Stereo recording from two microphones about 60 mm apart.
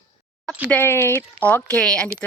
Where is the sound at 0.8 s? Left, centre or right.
Left.